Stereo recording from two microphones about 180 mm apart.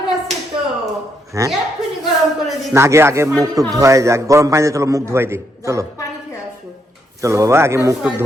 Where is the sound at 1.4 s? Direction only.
15° right (ahead or behind).